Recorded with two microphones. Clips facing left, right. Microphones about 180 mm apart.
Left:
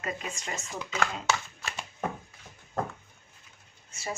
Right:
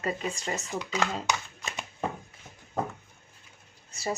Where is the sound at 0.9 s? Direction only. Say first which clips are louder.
Even; 20° right (ahead or behind).